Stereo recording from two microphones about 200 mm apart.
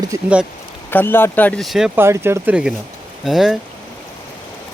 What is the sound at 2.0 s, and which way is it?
Speech, 10° right (ahead or behind).